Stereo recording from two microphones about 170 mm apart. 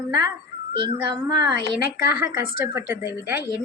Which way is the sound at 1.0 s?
20° right (ahead or behind).